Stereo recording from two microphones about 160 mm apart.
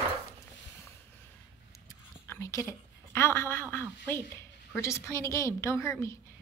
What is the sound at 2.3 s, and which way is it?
A woman's voice, 20° left (ahead or behind).